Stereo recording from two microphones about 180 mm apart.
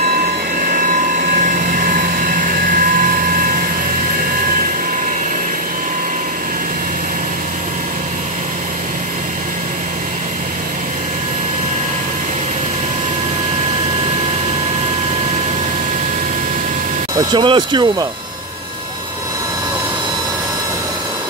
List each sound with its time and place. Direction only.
0.7 s vehicle: 50° right (ahead or behind)
17.2 s speech: 25° right (ahead or behind)